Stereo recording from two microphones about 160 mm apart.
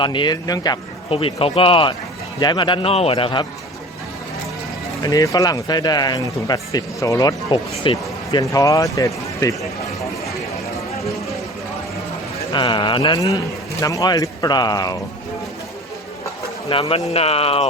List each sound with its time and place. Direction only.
0.0 s a man's voice: 30° left (ahead or behind)
5.0 s speech: 20° left (ahead or behind)
12.5 s speech: 30° left (ahead or behind)
16.6 s a man's voice: 35° left (ahead or behind)